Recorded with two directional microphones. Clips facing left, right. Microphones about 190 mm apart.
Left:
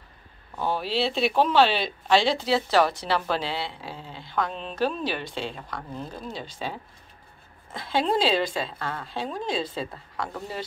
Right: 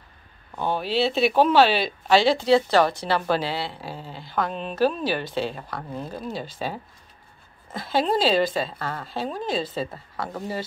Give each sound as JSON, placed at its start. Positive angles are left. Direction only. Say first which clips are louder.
{"t": 0.6, "sound": "speech", "louder": "right 2 dB", "side_deg": 0}
{"t": 8.7, "sound": "speech", "louder": "right 1 dB", "side_deg": -35}
{"t": 9.0, "sound": "speech", "louder": "right 3 dB", "side_deg": -5}